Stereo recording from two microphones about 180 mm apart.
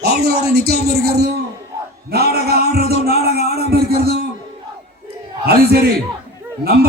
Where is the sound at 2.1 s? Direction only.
60° right (ahead or behind).